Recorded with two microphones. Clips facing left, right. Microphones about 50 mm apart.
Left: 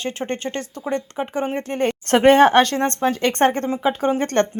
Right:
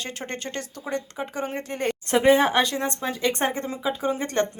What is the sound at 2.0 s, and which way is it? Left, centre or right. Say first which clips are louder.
Speech: left 6 dB; left.